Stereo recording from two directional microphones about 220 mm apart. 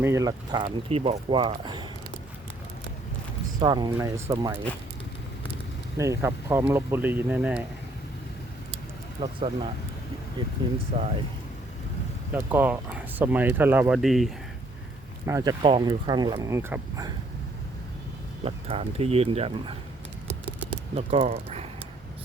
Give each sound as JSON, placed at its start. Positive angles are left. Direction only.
{"t": 0.0, "sound": "speech", "side_deg": -15}
{"t": 3.6, "sound": "speech", "side_deg": -20}
{"t": 6.0, "sound": "speech", "side_deg": -10}
{"t": 9.2, "sound": "speech", "side_deg": -25}
{"t": 10.9, "sound": "speech", "side_deg": -25}
{"t": 12.3, "sound": "speech", "side_deg": -10}
{"t": 15.3, "sound": "speech", "side_deg": -15}
{"t": 18.4, "sound": "speech", "side_deg": -25}
{"t": 20.9, "sound": "speech", "side_deg": -30}